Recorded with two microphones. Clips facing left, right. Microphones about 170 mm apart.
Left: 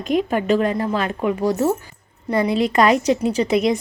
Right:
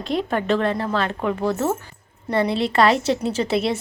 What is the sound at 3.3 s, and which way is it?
Speech, 15° left (ahead or behind).